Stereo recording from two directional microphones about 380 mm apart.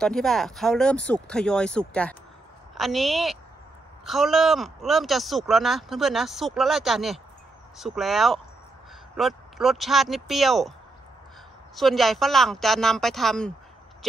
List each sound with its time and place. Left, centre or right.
0.0 s speech: centre
11.7 s speech: centre